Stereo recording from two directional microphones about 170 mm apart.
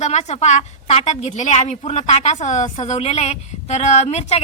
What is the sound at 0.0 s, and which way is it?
A woman's voice, 40° left (ahead or behind).